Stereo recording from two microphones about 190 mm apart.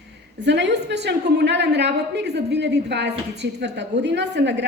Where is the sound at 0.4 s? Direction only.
65° right (ahead or behind).